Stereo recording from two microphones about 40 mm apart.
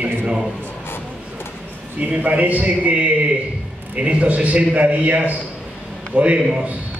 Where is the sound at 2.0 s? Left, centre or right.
Right.